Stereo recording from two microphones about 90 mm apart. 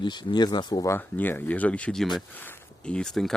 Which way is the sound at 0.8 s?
25° left (ahead or behind).